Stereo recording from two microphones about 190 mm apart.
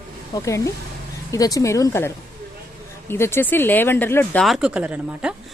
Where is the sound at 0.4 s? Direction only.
15° left (ahead or behind).